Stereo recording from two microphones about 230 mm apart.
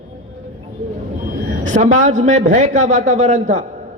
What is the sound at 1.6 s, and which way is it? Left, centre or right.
A man's voice, right.